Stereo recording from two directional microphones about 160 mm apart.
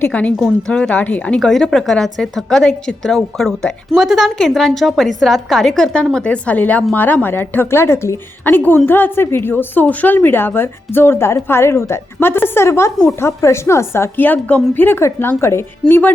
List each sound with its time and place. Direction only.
0.0 s a woman's voice: 10° left (ahead or behind)